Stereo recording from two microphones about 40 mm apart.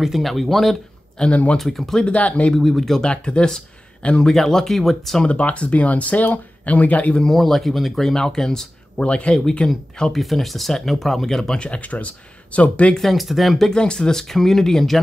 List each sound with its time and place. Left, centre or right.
0.0 s speech: centre
1.3 s speech: left
1.6 s speech: centre
2.1 s speech: left
2.6 s speech: centre
3.0 s speech: left
4.3 s speech: centre
5.2 s speech: left
7.2 s speech: centre
9.0 s speech: left
10.1 s speech: centre
11.6 s speech: left
12.9 s speech: centre
13.7 s speech: centre